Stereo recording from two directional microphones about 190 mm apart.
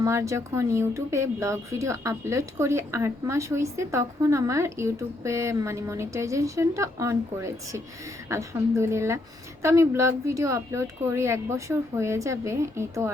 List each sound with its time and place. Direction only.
0.0 s speech: 15° right (ahead or behind)